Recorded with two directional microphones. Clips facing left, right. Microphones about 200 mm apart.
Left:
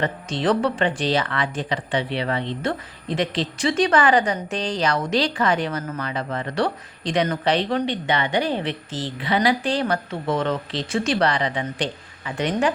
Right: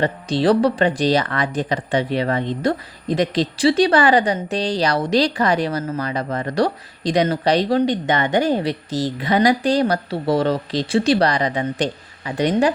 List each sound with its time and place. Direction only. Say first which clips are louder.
0.0 s speech: right 5 dB; 35° right (ahead or behind)